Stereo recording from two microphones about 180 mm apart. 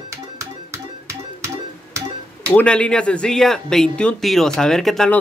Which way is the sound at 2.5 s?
5° left (ahead or behind).